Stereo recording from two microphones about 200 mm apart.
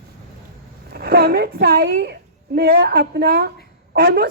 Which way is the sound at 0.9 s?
50° right (ahead or behind).